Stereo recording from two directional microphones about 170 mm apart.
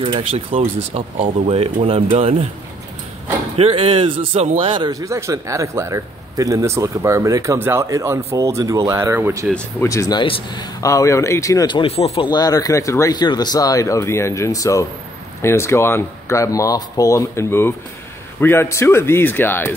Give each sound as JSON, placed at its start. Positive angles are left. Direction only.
{"t": 0.0, "sound": "speech", "side_deg": -35}
{"t": 3.5, "sound": "speech", "side_deg": -35}
{"t": 4.7, "sound": "speech", "side_deg": -20}
{"t": 9.5, "sound": "speech", "side_deg": 5}
{"t": 9.8, "sound": "speech", "side_deg": 20}
{"t": 12.3, "sound": "speech", "side_deg": 25}